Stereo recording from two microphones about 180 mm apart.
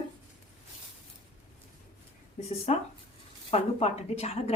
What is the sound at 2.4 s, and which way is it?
A woman's voice, 40° left (ahead or behind).